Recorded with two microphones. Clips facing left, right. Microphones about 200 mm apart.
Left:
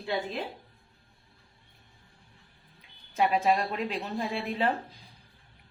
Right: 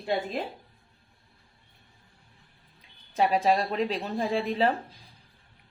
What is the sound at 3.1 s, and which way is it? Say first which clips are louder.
A woman's voice: right 2 dB; 35° right (ahead or behind).